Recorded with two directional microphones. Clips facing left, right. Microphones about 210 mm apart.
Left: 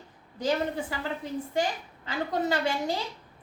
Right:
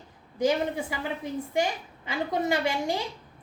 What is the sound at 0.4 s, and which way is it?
Speech, 10° right (ahead or behind).